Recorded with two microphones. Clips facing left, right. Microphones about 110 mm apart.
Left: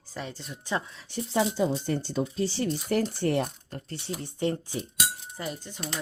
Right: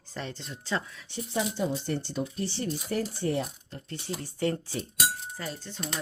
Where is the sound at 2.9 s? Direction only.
75° left (ahead or behind).